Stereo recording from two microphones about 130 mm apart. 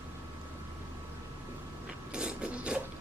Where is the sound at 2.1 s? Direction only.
5° right (ahead or behind).